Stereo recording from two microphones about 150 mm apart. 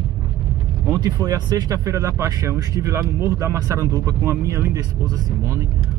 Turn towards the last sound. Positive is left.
turn(degrees=-20)  # may be behind; listen again after turning